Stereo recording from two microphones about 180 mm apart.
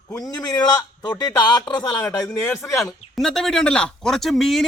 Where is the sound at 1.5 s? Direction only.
25° left (ahead or behind).